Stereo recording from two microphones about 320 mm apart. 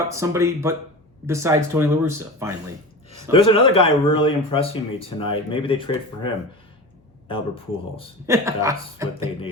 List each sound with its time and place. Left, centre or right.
0.1 s speech: centre
3.3 s speech: centre
7.3 s speech: centre
8.3 s speech: centre